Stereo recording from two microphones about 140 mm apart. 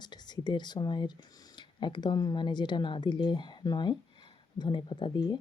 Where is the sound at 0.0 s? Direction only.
30° left (ahead or behind).